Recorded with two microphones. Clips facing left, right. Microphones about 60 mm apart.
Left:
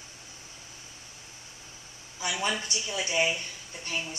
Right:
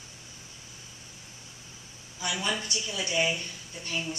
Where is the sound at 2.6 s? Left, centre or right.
Left.